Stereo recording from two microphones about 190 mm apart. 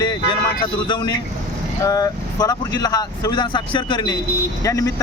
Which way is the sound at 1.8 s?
20° left (ahead or behind).